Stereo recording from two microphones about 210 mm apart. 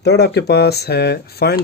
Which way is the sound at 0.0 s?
50° left (ahead or behind).